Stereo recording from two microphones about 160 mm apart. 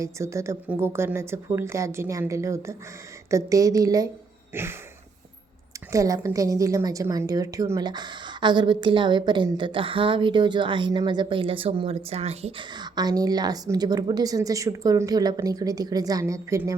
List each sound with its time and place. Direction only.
0.0 s a woman's voice: 20° right (ahead or behind)
5.9 s a woman's voice: 20° right (ahead or behind)